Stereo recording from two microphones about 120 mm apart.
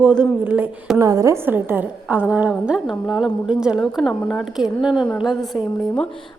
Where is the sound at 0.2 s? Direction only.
15° right (ahead or behind).